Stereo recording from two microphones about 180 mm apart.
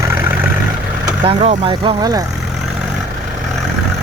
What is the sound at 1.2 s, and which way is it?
Speech, 35° right (ahead or behind).